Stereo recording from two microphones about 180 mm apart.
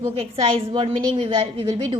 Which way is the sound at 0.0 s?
30° right (ahead or behind).